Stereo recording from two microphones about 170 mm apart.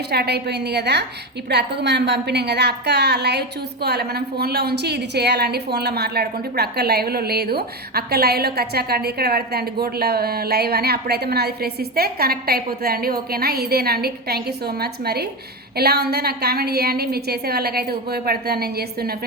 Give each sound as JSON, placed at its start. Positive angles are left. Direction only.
{"t": 0.1, "sound": "a woman's voice", "side_deg": -70}